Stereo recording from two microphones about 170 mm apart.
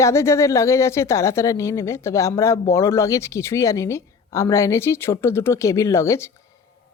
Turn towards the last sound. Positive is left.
turn(degrees=15)  # may be behind; listen again after turning